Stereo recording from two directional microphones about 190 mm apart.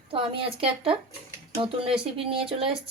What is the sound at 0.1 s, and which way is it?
A woman's voice, 30° right (ahead or behind).